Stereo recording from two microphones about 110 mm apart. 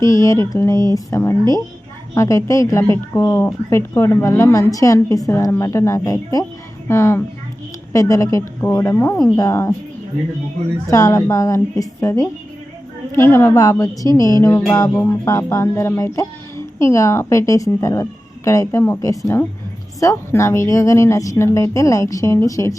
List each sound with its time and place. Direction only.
0.0 s a child's voice: 30° left (ahead or behind)
10.8 s a child's voice: 30° left (ahead or behind)